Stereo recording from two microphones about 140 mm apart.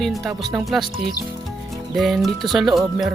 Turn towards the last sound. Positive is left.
turn(degrees=0)  # may be behind; listen again after turning